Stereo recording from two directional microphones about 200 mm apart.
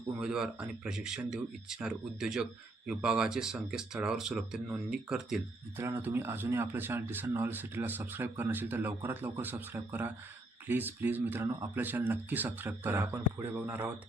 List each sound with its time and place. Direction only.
0.2 s speech: 5° right (ahead or behind)